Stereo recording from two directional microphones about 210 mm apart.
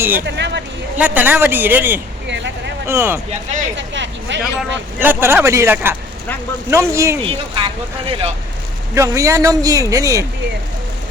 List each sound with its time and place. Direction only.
0.2 s a sound: 55° right (ahead or behind)
0.9 s a man's voice: 10° right (ahead or behind)
2.2 s vehicle: 55° right (ahead or behind)
2.8 s a man's voice: 10° right (ahead or behind)
3.8 s speech: 60° right (ahead or behind)
4.9 s a man's voice: 10° right (ahead or behind)
7.3 s speech: 25° right (ahead or behind)
9.0 s a man's voice: 15° right (ahead or behind)